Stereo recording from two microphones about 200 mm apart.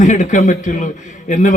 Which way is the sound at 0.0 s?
40° left (ahead or behind).